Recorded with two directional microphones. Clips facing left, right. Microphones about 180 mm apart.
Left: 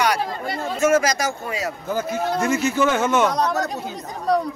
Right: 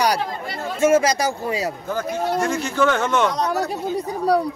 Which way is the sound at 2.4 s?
5° left (ahead or behind).